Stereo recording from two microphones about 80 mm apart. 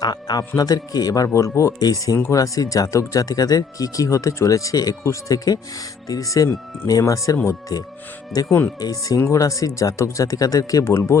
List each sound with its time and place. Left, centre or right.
0.0 s speech: left
1.3 s speech: left
1.8 s speech: left
8.8 s speech: left